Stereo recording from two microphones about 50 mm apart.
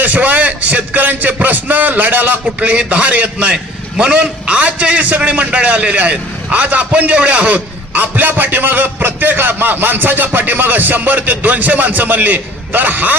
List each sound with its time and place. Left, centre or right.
0.0 s a man's voice: right
2.6 s a man's voice: right